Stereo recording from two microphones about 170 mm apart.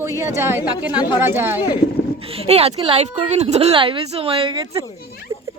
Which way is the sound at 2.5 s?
35° right (ahead or behind).